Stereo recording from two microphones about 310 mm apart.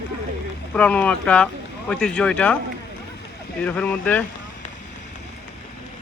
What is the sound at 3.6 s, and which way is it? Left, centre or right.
Speech, centre.